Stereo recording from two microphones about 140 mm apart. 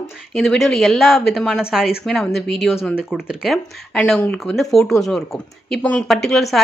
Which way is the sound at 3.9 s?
5° left (ahead or behind).